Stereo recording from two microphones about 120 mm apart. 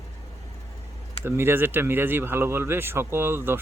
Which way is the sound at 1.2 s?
20° right (ahead or behind).